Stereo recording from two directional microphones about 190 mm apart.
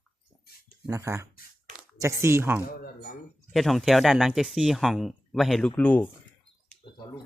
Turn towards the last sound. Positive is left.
turn(degrees=20)  # may be behind; listen again after turning